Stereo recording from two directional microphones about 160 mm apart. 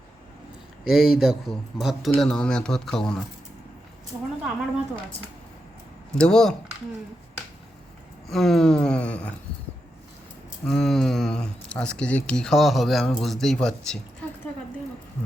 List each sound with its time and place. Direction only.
0.9 s speech: centre (ahead or behind)
4.1 s a woman's voice: 20° right (ahead or behind)
6.1 s speech: 5° left (ahead or behind)
8.3 s speech: centre (ahead or behind)
10.7 s speech: 5° left (ahead or behind)